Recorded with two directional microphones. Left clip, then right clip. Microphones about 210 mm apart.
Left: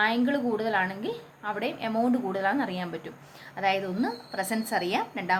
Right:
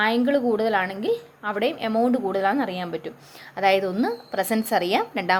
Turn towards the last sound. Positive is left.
turn(degrees=-35)  # may be behind; listen again after turning